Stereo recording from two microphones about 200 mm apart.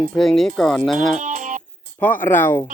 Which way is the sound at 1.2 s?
40° right (ahead or behind).